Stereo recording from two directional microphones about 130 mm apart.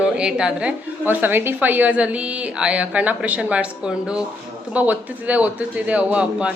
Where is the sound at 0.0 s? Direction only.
5° right (ahead or behind).